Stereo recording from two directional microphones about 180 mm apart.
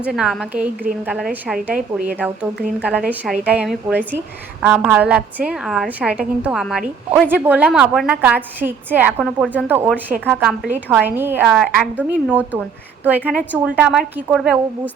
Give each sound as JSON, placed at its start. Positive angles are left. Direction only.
{"t": 0.0, "sound": "a woman's voice", "side_deg": -5}